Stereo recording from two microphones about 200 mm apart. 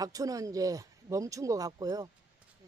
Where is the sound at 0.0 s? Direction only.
15° right (ahead or behind).